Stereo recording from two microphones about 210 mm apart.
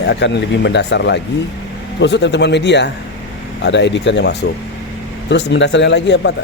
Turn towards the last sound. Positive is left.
turn(degrees=55)  # may be behind; listen again after turning